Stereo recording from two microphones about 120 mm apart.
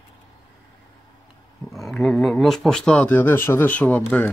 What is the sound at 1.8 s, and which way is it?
Speech, centre (ahead or behind).